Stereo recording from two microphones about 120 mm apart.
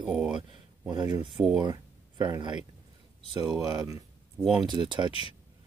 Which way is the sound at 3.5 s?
25° right (ahead or behind).